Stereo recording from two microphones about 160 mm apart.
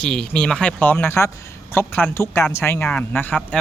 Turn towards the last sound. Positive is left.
turn(degrees=10)  # may be behind; listen again after turning